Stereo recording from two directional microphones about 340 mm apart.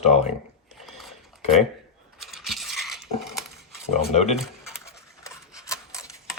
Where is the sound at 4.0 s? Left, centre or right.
Centre.